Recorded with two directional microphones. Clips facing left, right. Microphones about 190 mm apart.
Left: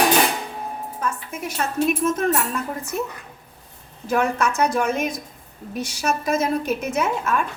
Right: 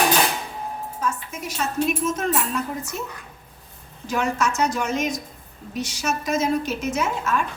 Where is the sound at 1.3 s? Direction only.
55° left (ahead or behind).